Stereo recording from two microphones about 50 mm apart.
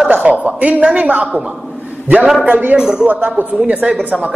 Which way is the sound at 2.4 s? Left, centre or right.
Right.